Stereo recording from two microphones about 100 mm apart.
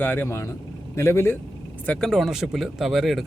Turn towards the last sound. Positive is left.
turn(degrees=0)  # may be behind; listen again after turning